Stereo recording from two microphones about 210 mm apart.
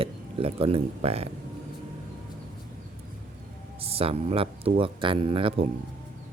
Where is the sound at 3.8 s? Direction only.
25° right (ahead or behind).